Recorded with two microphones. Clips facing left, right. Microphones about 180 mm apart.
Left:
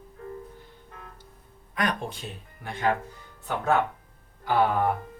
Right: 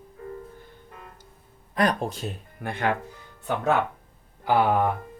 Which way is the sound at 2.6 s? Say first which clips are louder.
Right 5 dB; 60° right (ahead or behind).